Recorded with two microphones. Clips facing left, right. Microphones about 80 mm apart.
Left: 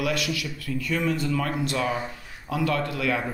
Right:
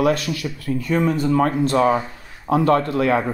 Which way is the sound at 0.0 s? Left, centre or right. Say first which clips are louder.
Right 7 dB; right.